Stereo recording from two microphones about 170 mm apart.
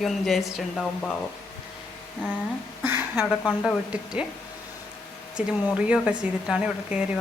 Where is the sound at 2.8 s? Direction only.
10° right (ahead or behind).